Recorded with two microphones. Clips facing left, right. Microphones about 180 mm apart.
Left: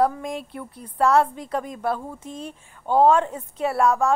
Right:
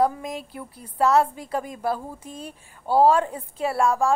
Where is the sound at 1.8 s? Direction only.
30° right (ahead or behind).